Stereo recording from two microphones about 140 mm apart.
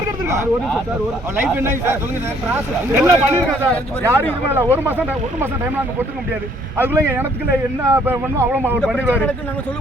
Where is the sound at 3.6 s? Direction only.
10° left (ahead or behind).